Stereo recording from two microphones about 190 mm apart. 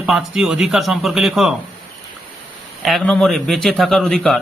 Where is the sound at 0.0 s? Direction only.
Centre (ahead or behind).